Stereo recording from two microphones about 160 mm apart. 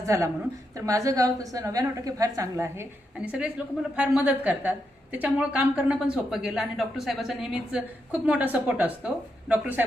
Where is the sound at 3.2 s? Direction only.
10° right (ahead or behind).